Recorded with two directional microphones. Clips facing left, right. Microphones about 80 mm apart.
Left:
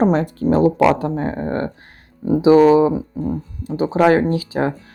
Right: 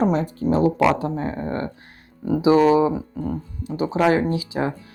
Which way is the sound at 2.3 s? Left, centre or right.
Left.